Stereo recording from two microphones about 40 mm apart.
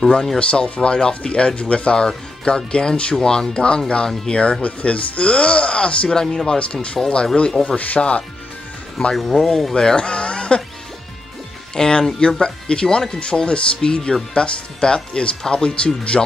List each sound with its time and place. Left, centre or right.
0.4 s speech: left
6.0 s speech: centre
6.6 s speech: left
7.6 s speech: left
9.1 s speech: centre
9.8 s speech: left
11.7 s speech: centre